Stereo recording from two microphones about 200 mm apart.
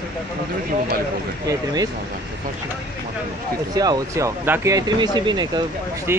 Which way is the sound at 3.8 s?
15° right (ahead or behind).